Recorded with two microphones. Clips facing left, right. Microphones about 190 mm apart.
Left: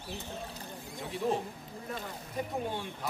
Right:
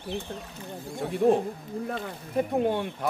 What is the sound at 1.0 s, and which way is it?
Speech, 55° right (ahead or behind).